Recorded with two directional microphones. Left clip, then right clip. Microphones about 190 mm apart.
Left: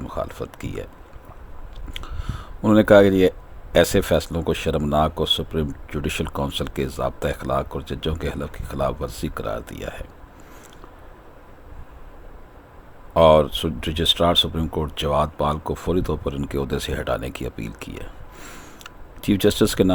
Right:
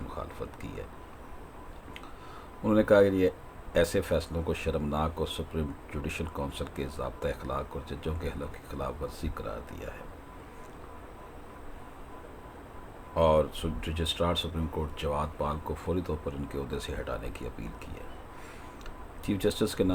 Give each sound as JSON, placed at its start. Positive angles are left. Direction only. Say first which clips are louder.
{"t": 0.1, "sound": "speech", "louder": "left 11 dB", "side_deg": 40}
{"t": 1.9, "sound": "speech", "louder": "left 11 dB", "side_deg": 45}
{"t": 13.1, "sound": "speech", "louder": "left 11 dB", "side_deg": 45}
{"t": 18.4, "sound": "a sound", "louder": "left 6 dB", "side_deg": 40}